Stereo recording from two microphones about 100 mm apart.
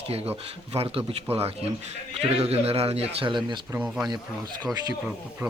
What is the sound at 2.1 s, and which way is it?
Speech, 90° right.